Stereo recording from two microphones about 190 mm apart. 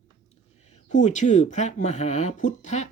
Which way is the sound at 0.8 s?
40° left (ahead or behind).